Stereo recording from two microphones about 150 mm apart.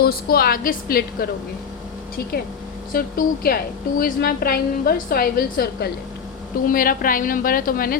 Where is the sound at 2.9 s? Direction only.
75° left (ahead or behind).